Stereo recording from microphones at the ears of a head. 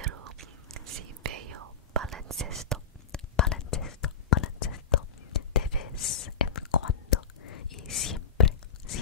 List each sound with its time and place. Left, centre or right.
0.0 s whispering: right
3.3 s whispering: left